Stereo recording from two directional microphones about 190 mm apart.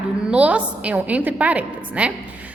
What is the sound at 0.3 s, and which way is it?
A woman's voice, 5° right (ahead or behind).